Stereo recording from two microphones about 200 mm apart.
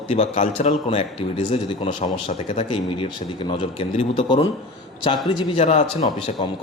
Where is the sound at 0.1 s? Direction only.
30° left (ahead or behind).